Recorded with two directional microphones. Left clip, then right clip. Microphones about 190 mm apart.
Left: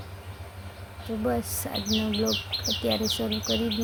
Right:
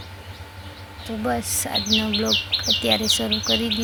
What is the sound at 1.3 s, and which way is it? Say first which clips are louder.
Speech: right 5 dB; 5° left (ahead or behind).